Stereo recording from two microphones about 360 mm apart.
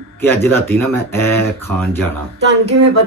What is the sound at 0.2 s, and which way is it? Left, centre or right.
Speech, centre.